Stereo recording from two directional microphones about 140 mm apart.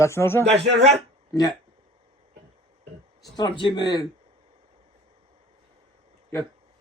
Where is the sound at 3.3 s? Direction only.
35° left (ahead or behind).